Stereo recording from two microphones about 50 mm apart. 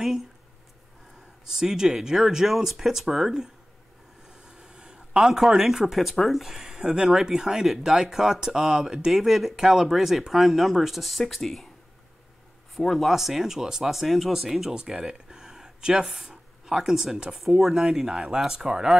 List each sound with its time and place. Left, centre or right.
1.5 s speech: centre
4.6 s a sound: centre
4.9 s speech: centre
9.1 s speech: centre
12.7 s speech: centre
14.7 s speech: centre